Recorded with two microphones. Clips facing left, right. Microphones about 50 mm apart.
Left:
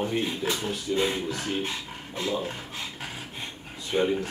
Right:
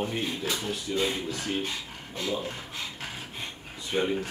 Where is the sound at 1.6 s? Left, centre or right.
Left.